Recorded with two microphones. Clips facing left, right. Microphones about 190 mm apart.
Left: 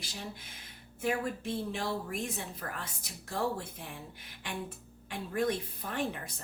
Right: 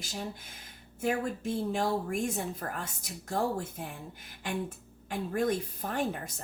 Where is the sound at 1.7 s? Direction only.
45° right (ahead or behind).